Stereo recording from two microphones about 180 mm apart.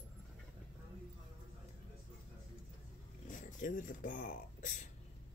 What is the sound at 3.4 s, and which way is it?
Speech, 45° left (ahead or behind).